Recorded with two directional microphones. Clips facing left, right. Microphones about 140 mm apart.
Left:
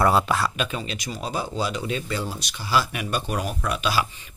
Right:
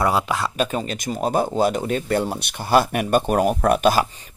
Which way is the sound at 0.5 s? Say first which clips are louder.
Right 6 dB; 45° right (ahead or behind).